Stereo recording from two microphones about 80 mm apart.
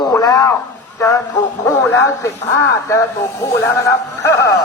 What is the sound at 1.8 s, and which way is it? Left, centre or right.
Speech, left.